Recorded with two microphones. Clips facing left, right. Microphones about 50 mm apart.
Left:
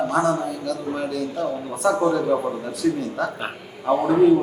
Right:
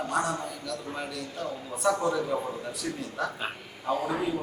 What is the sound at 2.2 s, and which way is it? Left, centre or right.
Speech, left.